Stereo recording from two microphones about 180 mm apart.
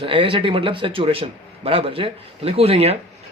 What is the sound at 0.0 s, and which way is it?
A man's voice, 30° right (ahead or behind).